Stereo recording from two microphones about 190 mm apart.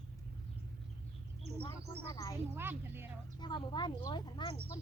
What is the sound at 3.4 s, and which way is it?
Speech, 25° left (ahead or behind).